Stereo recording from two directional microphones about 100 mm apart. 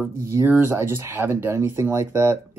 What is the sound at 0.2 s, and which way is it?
Speech, 30° right (ahead or behind).